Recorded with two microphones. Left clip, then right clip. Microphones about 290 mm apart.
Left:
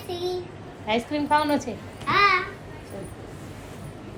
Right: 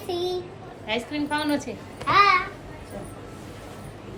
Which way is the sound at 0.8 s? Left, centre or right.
Left.